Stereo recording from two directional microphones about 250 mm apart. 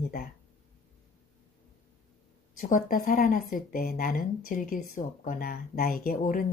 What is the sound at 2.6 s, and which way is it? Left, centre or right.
Speech, left.